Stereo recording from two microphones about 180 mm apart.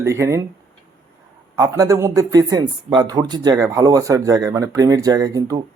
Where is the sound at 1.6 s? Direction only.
20° right (ahead or behind).